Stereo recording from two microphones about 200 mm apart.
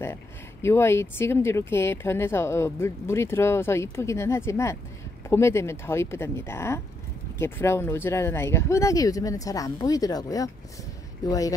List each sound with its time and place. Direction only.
0.0 s speech: 10° left (ahead or behind)